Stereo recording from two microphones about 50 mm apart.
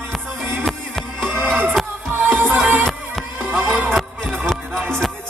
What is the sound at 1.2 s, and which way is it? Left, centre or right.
Music, right.